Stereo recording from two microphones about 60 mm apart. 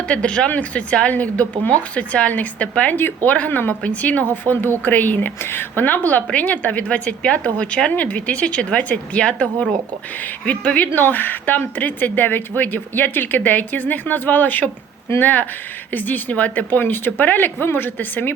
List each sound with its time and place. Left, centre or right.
0.1 s a woman's voice: centre
10.9 s a woman's voice: left